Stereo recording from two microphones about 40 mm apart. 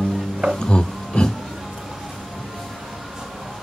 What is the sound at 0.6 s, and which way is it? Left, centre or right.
Music, left.